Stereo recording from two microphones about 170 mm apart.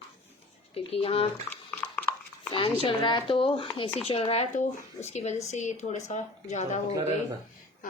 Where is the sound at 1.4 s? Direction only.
10° left (ahead or behind).